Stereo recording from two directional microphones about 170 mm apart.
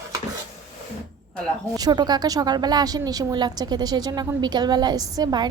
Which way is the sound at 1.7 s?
25° right (ahead or behind).